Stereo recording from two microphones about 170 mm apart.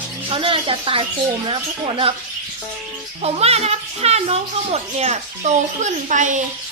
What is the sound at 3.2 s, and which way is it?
A child's voice, 35° right (ahead or behind).